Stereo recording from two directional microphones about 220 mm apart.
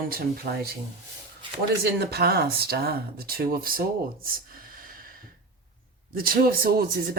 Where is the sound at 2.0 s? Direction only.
45° right (ahead or behind).